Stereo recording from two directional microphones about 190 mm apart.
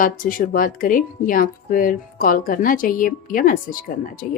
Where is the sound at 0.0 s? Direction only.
45° left (ahead or behind).